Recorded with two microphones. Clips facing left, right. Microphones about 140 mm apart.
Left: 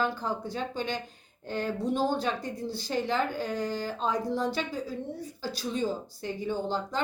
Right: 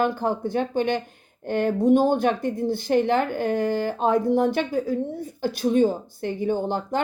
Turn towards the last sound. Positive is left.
turn(degrees=-55)  # may be behind; listen again after turning